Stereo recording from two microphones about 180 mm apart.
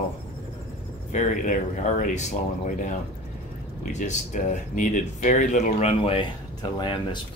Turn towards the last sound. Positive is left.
turn(degrees=25)  # may be behind; listen again after turning